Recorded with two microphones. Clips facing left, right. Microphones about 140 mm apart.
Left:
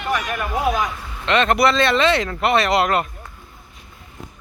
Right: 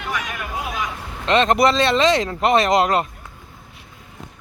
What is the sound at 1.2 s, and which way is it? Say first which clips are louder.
Speech: right 1 dB; 35° right (ahead or behind).